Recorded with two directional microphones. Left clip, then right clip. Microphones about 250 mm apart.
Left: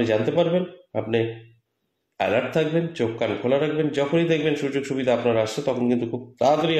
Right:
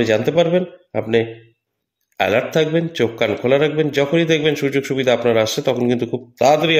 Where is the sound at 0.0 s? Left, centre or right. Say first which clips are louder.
Right 5 dB; right.